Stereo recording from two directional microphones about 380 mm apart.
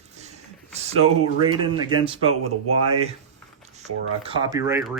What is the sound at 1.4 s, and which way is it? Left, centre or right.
Speech, centre.